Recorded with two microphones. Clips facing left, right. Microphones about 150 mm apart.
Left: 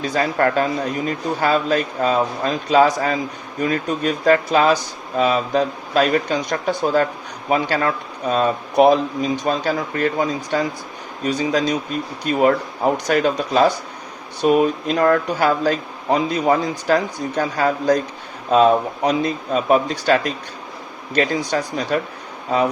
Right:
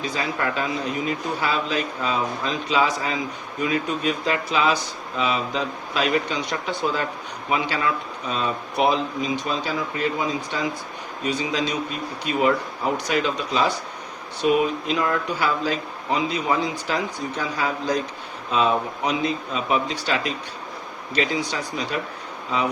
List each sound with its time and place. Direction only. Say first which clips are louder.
0.1 s speech: left 10 dB; 50° left (ahead or behind)